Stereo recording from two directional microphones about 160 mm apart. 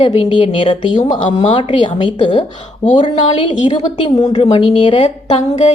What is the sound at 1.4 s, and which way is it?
Speech, 45° left (ahead or behind).